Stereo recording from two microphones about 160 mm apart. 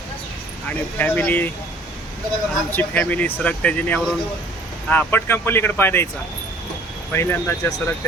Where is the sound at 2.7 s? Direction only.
10° left (ahead or behind).